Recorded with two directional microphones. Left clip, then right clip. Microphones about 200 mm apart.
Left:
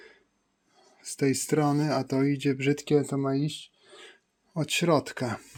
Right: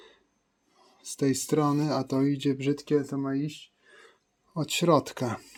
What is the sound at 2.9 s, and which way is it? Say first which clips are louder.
Speech: left 2 dB; 35° left (ahead or behind).